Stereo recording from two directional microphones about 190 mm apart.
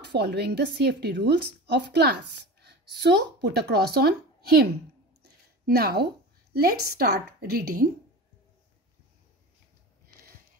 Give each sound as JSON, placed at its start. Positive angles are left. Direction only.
{"t": 0.0, "sound": "a woman's voice", "side_deg": -60}
{"t": 5.7, "sound": "a woman's voice", "side_deg": -55}